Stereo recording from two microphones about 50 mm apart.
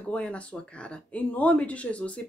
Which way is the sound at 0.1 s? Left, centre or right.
Left.